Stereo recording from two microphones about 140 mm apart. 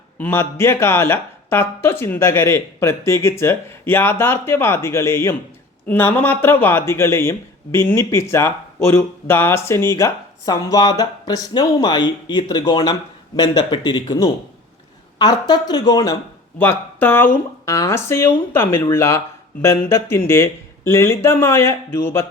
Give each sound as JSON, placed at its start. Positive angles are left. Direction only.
{"t": 0.2, "sound": "speech", "side_deg": 15}
{"t": 16.6, "sound": "speech", "side_deg": 15}